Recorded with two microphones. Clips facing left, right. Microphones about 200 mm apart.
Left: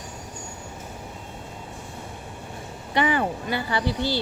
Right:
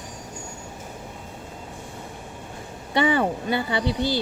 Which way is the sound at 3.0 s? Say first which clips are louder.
Right 5 dB; 25° right (ahead or behind).